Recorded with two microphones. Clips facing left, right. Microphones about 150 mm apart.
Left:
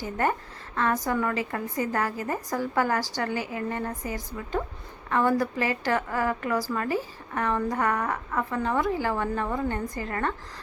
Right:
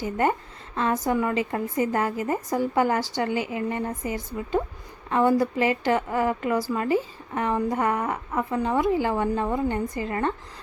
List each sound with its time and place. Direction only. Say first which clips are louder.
0.0 s a woman's voice: right 3 dB; 20° right (ahead or behind)